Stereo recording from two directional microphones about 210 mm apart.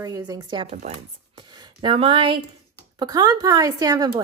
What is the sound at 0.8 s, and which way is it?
Speech, 30° right (ahead or behind).